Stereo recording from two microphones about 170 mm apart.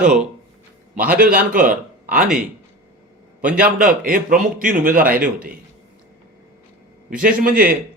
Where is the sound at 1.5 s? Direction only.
50° right (ahead or behind).